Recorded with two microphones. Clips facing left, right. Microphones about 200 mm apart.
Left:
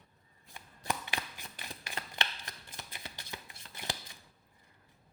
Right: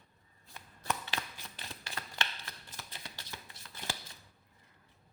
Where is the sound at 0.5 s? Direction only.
10° left (ahead or behind).